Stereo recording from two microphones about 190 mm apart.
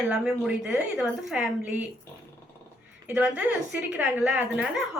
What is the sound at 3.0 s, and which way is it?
A woman's voice, 5° right (ahead or behind).